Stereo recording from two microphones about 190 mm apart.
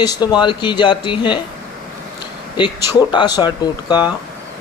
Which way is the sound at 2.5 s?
20° left (ahead or behind).